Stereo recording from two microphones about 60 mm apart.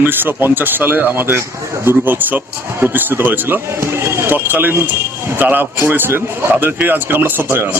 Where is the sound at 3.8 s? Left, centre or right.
Right.